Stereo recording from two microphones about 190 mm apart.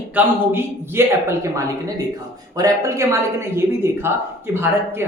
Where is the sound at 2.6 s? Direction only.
15° right (ahead or behind).